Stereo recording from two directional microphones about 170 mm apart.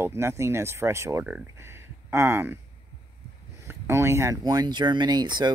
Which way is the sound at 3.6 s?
15° right (ahead or behind).